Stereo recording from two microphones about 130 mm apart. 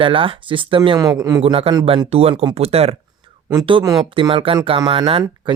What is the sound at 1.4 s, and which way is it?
Speech, 45° right (ahead or behind).